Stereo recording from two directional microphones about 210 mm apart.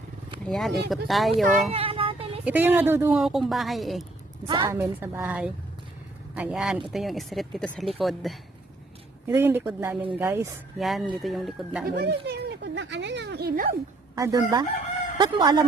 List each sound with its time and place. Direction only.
0.4 s a woman's voice: centre (ahead or behind)
1.7 s a sound: 25° right (ahead or behind)
2.4 s a woman's voice: 10° right (ahead or behind)
4.4 s speech: 20° right (ahead or behind)
4.8 s a woman's voice: 10° right (ahead or behind)
9.2 s a woman's voice: 10° right (ahead or behind)
11.9 s speech: 50° right (ahead or behind)
14.2 s speech: 15° right (ahead or behind)